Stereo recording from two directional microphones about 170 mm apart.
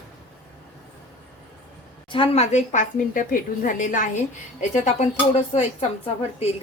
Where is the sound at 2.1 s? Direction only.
30° left (ahead or behind).